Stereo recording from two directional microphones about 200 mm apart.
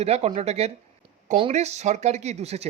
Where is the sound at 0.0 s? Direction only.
30° right (ahead or behind).